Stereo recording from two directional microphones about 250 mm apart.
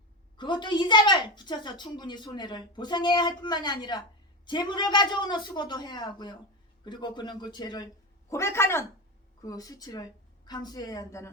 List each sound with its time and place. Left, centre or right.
0.3 s a woman's voice: centre